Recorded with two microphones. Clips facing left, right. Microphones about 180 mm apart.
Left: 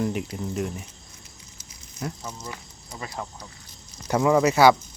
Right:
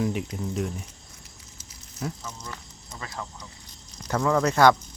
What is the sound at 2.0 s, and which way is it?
Speech, centre (ahead or behind).